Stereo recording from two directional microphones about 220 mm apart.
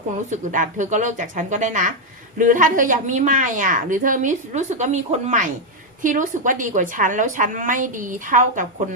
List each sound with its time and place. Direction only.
0.3 s a woman's voice: 35° right (ahead or behind)